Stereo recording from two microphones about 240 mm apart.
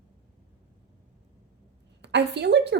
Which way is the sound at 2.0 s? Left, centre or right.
Right.